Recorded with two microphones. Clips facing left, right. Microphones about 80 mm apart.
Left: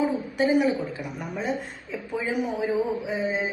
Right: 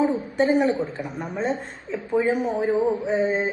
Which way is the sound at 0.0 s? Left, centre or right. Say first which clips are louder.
Right 3 dB; right.